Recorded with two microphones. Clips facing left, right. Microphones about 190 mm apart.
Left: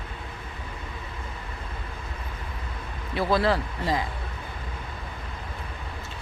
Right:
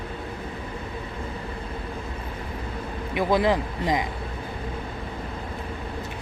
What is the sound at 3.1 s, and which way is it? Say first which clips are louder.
Speech: right 2 dB; 15° right (ahead or behind).